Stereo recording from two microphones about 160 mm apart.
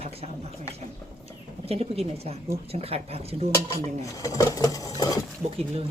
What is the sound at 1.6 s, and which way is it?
A woman's voice, 40° right (ahead or behind).